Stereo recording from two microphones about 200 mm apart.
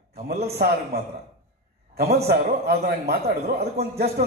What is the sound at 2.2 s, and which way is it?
A man's voice, 50° right (ahead or behind).